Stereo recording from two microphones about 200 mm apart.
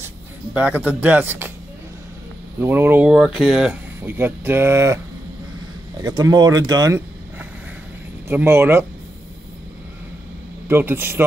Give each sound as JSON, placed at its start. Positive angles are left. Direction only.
{"t": 0.5, "sound": "speech", "side_deg": -5}
{"t": 2.6, "sound": "speech", "side_deg": -10}
{"t": 10.7, "sound": "speech", "side_deg": -10}